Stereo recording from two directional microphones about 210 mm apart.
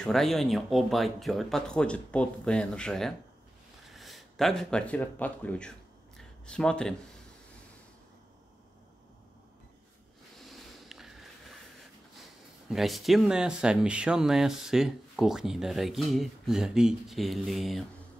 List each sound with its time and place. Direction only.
0.0 s speech: centre (ahead or behind)
10.4 s a sound: centre (ahead or behind)
12.6 s speech: centre (ahead or behind)